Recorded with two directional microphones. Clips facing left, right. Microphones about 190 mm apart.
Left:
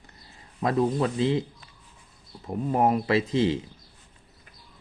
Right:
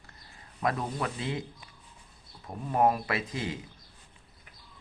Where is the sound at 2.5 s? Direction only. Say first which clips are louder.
Left 3 dB; 25° left (ahead or behind).